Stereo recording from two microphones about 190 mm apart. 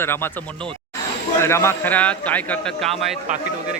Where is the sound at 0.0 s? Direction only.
10° left (ahead or behind).